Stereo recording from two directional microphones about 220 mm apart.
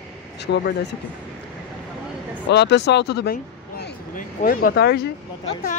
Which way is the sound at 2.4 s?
50° left (ahead or behind).